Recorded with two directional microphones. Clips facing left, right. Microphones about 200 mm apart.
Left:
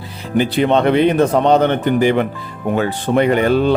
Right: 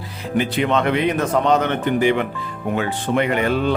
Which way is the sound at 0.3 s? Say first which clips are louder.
Left 5 dB; 35° left (ahead or behind).